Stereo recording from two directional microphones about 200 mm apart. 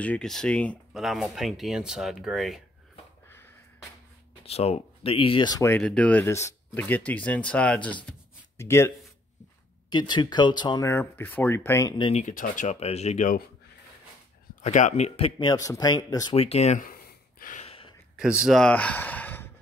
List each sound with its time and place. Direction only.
0.0 s speech: 5° left (ahead or behind)
3.3 s a sound: 10° left (ahead or behind)
4.5 s speech: 30° left (ahead or behind); by 11.9 s 10° left (ahead or behind)
12.0 s speech: 35° left (ahead or behind)
14.5 s speech: 35° left (ahead or behind); by 16.3 s 20° left (ahead or behind)
16.3 s a sound: 30° left (ahead or behind)
17.6 s gasp: 25° left (ahead or behind)
18.1 s speech: 5° right (ahead or behind)